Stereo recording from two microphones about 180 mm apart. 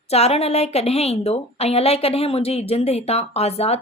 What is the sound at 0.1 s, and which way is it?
A woman's voice, 35° left (ahead or behind).